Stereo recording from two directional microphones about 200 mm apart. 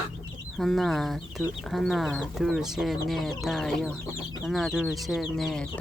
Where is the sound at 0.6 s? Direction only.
Centre (ahead or behind).